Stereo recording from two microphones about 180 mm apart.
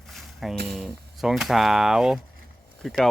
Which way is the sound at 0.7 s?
Centre (ahead or behind).